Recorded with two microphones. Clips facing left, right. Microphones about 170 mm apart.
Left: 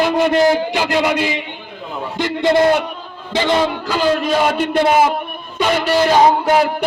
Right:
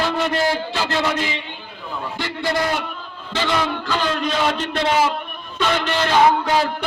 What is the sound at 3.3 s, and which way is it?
A man's voice, 15° left (ahead or behind).